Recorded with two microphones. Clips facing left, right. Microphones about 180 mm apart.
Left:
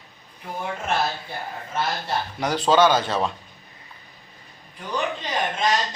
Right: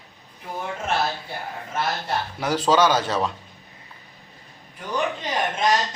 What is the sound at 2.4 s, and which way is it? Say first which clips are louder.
Speech: left 1 dB; 5° right (ahead or behind).